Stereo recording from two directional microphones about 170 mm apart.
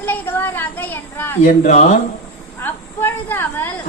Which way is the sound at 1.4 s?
45° left (ahead or behind).